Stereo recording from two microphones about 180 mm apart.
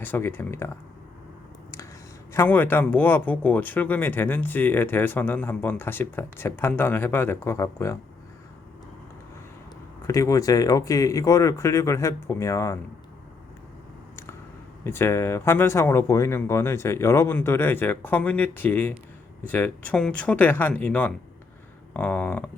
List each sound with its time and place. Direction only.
0.0 s speech: 10° left (ahead or behind)
2.3 s speech: 10° left (ahead or behind)
10.1 s speech: 15° left (ahead or behind)
14.8 s speech: 15° left (ahead or behind)